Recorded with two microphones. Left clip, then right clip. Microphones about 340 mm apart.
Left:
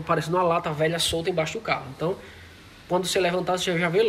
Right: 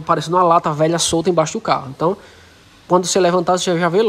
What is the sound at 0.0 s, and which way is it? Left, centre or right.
Speech, centre.